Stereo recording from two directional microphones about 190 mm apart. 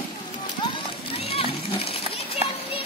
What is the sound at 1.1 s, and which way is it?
Children playing, 30° left (ahead or behind).